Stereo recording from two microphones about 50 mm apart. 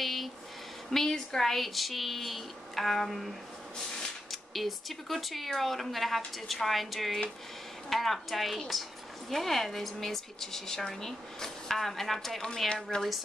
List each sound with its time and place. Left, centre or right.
0.0 s a sound: centre
0.8 s speech: centre
12.4 s speech: centre
12.9 s speech: centre